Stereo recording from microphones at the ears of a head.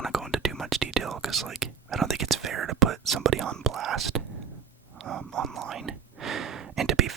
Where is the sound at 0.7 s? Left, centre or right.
Right.